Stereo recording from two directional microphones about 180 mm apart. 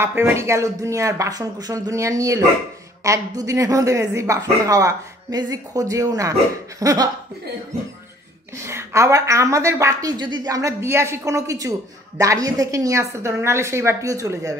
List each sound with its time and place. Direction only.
0.0 s speech: 15° right (ahead or behind)
8.6 s speech: 15° right (ahead or behind)